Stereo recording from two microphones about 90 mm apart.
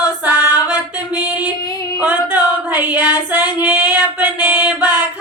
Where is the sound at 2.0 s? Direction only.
15° right (ahead or behind).